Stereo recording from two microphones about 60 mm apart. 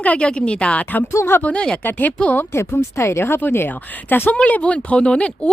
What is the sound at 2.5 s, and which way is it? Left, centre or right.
Speech, left.